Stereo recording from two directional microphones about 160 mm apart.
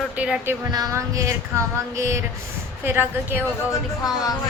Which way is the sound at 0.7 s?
20° right (ahead or behind).